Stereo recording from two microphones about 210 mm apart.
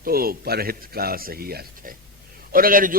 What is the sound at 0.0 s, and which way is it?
A man's voice, 45° right (ahead or behind).